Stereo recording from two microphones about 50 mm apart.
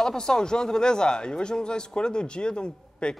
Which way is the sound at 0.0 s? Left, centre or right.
Centre.